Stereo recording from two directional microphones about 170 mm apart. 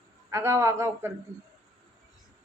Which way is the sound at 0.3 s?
15° right (ahead or behind).